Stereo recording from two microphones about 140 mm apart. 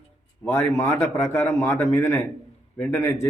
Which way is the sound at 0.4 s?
20° left (ahead or behind).